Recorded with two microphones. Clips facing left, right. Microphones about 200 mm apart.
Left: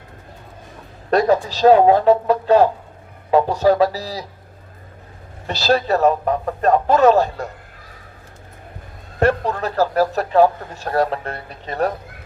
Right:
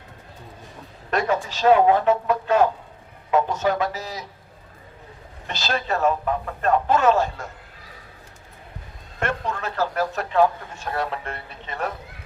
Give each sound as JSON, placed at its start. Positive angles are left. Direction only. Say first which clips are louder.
{"t": 1.1, "sound": "speech", "louder": "left 7 dB", "side_deg": 35}
{"t": 5.5, "sound": "speech", "louder": "left 8 dB", "side_deg": 35}
{"t": 9.1, "sound": "speech", "louder": "left 9 dB", "side_deg": 35}